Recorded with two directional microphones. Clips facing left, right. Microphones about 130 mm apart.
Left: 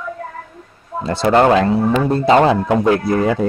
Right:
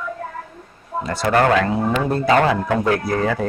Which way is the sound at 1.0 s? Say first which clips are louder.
Left 4 dB; 25° left (ahead or behind).